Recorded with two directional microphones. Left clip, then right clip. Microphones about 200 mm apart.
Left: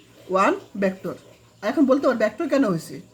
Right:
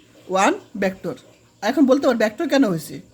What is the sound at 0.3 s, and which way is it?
A woman's voice, 30° right (ahead or behind).